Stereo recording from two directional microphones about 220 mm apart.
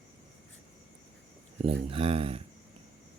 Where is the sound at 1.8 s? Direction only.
25° right (ahead or behind).